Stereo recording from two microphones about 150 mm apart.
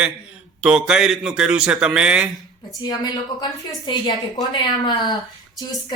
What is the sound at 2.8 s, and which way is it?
A woman's voice, 25° left (ahead or behind).